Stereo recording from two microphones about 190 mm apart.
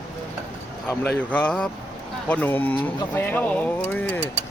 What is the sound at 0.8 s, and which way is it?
Speech, 5° left (ahead or behind).